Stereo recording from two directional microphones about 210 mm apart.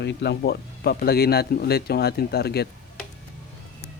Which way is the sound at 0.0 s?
55° left (ahead or behind).